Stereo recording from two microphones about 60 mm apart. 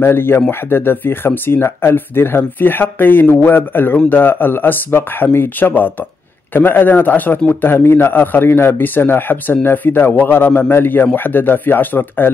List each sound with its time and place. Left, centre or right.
0.0 s speech: left